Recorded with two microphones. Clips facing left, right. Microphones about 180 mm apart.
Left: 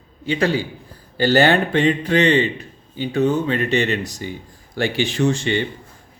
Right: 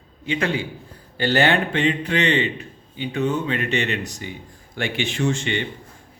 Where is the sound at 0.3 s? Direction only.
35° left (ahead or behind).